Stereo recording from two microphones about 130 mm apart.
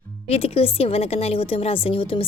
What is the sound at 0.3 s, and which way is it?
A woman's voice, 50° left (ahead or behind).